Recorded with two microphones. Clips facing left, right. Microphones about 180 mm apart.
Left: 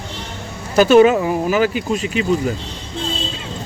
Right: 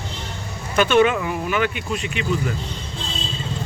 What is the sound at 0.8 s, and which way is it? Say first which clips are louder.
Speech: left 6 dB; 40° left (ahead or behind).